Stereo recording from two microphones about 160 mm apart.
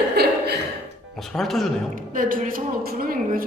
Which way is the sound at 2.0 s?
60° right (ahead or behind).